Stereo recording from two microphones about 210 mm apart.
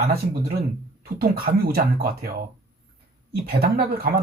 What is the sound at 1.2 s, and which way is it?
Speech, 45° right (ahead or behind).